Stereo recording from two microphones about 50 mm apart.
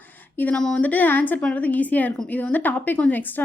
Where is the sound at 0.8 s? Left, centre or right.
Left.